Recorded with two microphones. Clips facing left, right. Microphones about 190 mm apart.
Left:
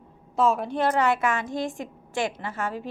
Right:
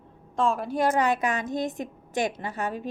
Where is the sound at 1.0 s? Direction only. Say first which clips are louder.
Left 1 dB; 15° right (ahead or behind).